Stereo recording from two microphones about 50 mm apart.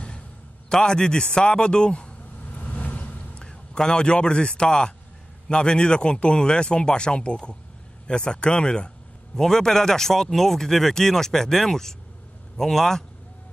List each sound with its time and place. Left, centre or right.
0.7 s a man's voice: centre
2.5 s a sound: left; by 4.9 s centre
5.5 s a man's voice: centre